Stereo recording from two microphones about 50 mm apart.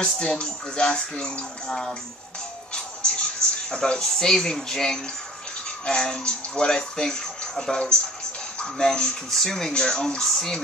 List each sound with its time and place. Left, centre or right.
0.0 s speech: centre
2.7 s music: centre
3.7 s speech: centre
9.7 s speech: centre